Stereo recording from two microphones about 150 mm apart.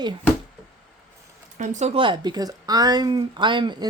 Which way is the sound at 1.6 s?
50° right (ahead or behind).